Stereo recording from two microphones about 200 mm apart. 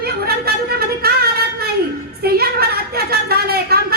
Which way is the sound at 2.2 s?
50° right (ahead or behind).